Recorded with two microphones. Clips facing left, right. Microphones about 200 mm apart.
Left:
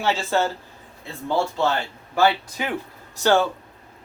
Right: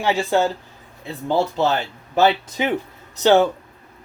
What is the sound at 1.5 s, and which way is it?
Speech, 20° right (ahead or behind).